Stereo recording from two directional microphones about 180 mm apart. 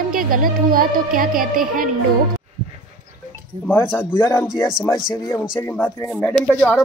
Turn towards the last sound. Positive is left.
turn(degrees=10)  # may be behind; listen again after turning